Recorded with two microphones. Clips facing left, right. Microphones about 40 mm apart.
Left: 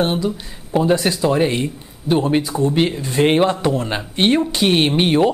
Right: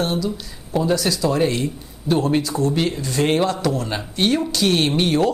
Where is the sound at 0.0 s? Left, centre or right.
Left.